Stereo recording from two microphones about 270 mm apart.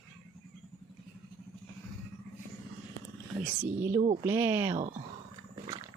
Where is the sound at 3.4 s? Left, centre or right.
Centre.